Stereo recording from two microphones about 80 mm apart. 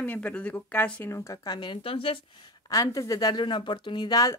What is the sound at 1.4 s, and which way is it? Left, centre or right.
Speech, left.